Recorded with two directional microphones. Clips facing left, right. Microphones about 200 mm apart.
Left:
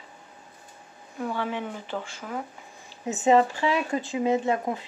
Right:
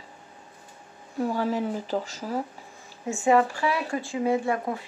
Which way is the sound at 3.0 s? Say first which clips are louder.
Left 1 dB; 20° left (ahead or behind).